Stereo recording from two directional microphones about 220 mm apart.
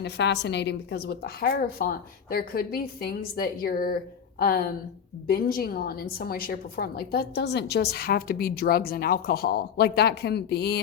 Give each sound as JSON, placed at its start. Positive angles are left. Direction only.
{"t": 0.0, "sound": "a woman's voice", "side_deg": 50}